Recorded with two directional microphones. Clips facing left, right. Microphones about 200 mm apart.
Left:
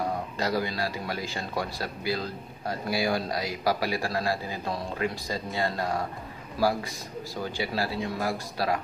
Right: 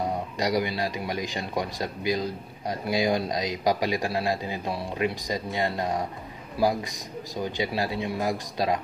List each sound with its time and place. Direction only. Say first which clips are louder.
0.0 s speech: right 2 dB; 15° right (ahead or behind)